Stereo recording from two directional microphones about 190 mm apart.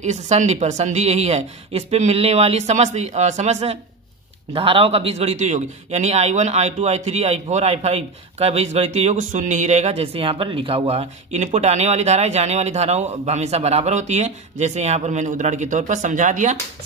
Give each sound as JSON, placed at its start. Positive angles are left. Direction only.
{"t": 0.0, "sound": "a man's voice", "side_deg": -35}